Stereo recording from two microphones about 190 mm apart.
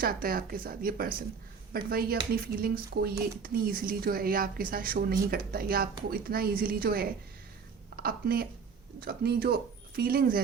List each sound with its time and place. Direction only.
0.0 s a woman's voice: 50° right (ahead or behind)